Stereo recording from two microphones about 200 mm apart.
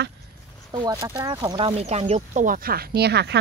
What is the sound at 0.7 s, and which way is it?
Speech, 25° right (ahead or behind).